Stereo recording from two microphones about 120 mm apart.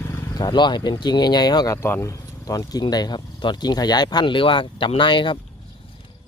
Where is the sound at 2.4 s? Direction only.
30° left (ahead or behind).